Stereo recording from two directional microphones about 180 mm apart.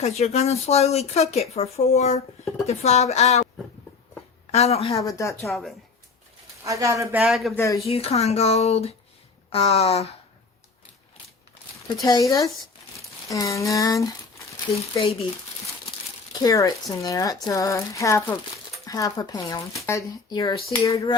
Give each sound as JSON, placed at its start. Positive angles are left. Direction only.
{"t": 0.2, "sound": "speech", "side_deg": 35}
{"t": 4.5, "sound": "speech", "side_deg": 35}
{"t": 4.9, "sound": "a sound", "side_deg": 15}
{"t": 5.4, "sound": "speech", "side_deg": 0}
{"t": 6.7, "sound": "speech", "side_deg": -15}
{"t": 7.2, "sound": "speech", "side_deg": 0}
{"t": 7.5, "sound": "a sound", "side_deg": 15}
{"t": 7.9, "sound": "speech", "side_deg": 35}
{"t": 12.0, "sound": "a sound", "side_deg": 20}
{"t": 16.4, "sound": "speech", "side_deg": 20}